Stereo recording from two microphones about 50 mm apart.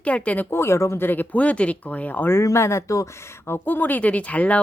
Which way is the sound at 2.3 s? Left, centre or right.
Left.